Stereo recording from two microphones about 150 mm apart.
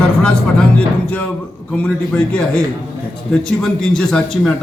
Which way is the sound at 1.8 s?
5° left (ahead or behind).